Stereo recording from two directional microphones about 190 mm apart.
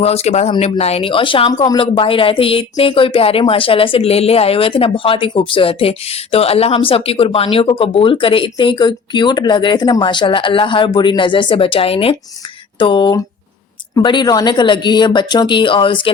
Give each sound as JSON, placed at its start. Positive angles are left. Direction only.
{"t": 0.0, "sound": "speech", "side_deg": 35}